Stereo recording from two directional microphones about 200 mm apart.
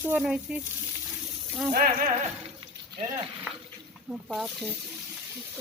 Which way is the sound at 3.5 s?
5° right (ahead or behind).